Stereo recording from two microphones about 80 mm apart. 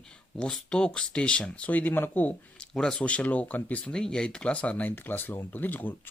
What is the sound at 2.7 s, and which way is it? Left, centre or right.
Speech, centre.